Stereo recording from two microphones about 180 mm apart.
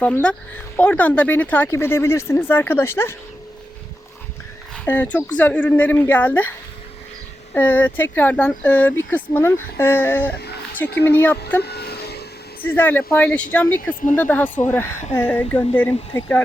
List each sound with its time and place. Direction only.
0.0 s speech: 5° left (ahead or behind)
4.7 s speech: 10° left (ahead or behind)
7.5 s speech: 10° left (ahead or behind)
11.6 s a sound: 60° left (ahead or behind)
12.6 s speech: 10° left (ahead or behind)